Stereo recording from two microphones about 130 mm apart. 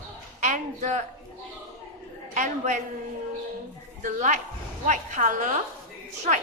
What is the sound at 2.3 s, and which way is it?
Speech, 75° right (ahead or behind).